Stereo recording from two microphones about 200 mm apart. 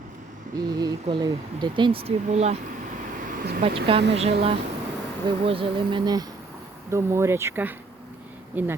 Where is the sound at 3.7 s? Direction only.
25° right (ahead or behind).